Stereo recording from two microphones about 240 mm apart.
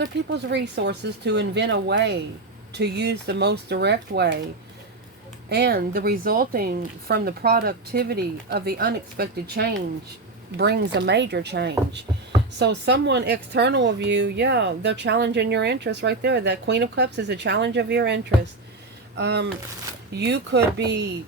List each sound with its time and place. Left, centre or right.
0.3 s speech: right
5.5 s speech: right